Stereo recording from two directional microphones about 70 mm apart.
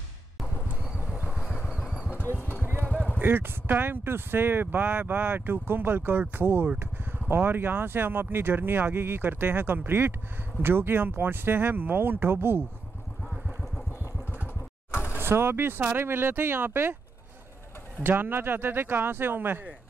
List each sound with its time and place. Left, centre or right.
0.7 s vehicle: centre
2.0 s vehicle: left
2.9 s vehicle: left
3.2 s speech: right
14.9 s a sound: left
15.1 s speech: right
18.0 s speech: right